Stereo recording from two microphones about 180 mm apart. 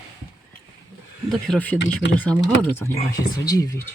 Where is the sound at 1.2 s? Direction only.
5° left (ahead or behind).